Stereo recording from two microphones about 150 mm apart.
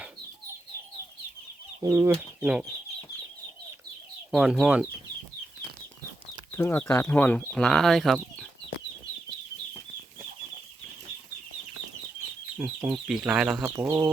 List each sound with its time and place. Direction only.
1.8 s speech: 20° right (ahead or behind)
2.4 s speech: 10° right (ahead or behind)
4.3 s speech: centre (ahead or behind)
6.5 s speech: 15° left (ahead or behind)
12.5 s speech: 10° right (ahead or behind)
13.7 s speech: 20° right (ahead or behind)